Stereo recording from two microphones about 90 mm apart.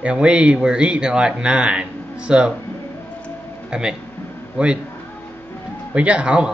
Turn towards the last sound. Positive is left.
turn(degrees=-10)  # may be behind; listen again after turning